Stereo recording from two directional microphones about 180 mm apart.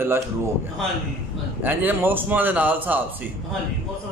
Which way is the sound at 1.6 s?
10° right (ahead or behind).